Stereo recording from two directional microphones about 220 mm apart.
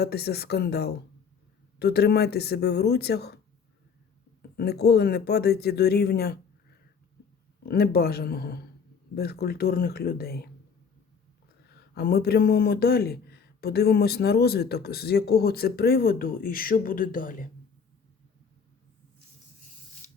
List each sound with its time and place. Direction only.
0.0 s a man's voice: 45° left (ahead or behind)
4.5 s a man's voice: 45° left (ahead or behind)
7.6 s a man's voice: 45° left (ahead or behind)
11.6 s a man's voice: 45° left (ahead or behind)